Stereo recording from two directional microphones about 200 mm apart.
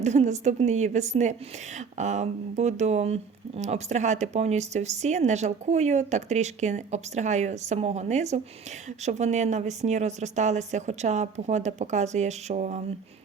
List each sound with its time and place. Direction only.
0.0 s speech: 35° right (ahead or behind)